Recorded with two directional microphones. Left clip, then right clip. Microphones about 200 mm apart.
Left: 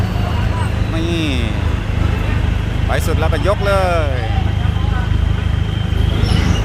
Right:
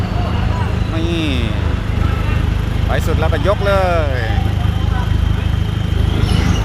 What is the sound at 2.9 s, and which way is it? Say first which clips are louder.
Speech: even; centre (ahead or behind).